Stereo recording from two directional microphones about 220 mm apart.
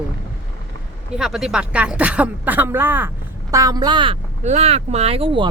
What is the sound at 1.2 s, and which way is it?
Speech, centre (ahead or behind).